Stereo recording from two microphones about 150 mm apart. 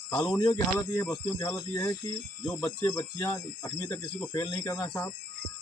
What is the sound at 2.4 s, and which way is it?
Speech, 5° left (ahead or behind).